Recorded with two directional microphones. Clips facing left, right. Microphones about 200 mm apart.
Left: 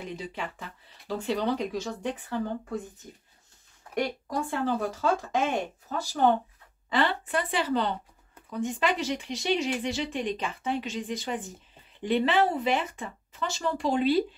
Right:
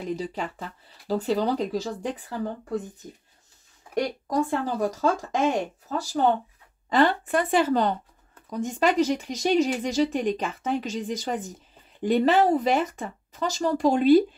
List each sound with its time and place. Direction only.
0.1 s speech: 40° right (ahead or behind)
4.0 s speech: 40° right (ahead or behind)